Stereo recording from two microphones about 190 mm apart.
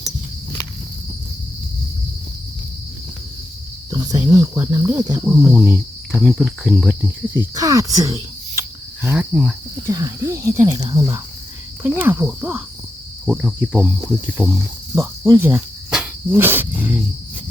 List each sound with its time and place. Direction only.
3.8 s speech: 20° right (ahead or behind)
5.2 s cricket: 5° right (ahead or behind)
7.3 s speech: 20° right (ahead or behind)
9.0 s cricket: 5° right (ahead or behind)
9.8 s speech: 15° right (ahead or behind)
13.2 s cricket: 5° right (ahead or behind)
14.9 s speech: 10° right (ahead or behind)